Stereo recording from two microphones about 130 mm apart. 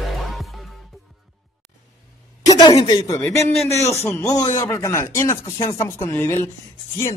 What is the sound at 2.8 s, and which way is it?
Speech, 40° left (ahead or behind).